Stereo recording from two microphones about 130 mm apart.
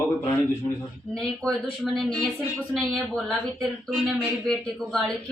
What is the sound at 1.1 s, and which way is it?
Speech, 5° left (ahead or behind).